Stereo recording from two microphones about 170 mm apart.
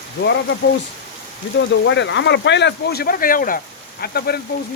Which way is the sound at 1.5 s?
90° left.